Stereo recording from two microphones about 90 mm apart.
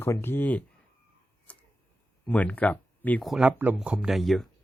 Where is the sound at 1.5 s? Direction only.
15° left (ahead or behind).